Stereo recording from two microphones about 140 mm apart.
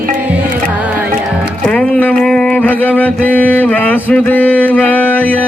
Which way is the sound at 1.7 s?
10° left (ahead or behind).